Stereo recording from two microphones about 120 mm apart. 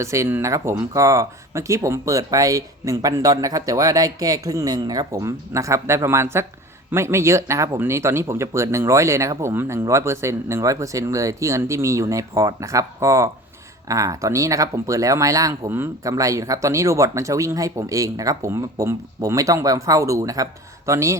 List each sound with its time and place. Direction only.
0.0 s speech: 25° right (ahead or behind)